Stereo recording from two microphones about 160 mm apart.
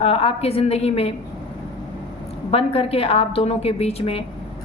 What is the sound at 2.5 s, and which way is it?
A woman's voice, 35° left (ahead or behind).